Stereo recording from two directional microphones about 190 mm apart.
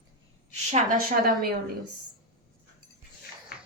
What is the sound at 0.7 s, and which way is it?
Speech, 45° right (ahead or behind).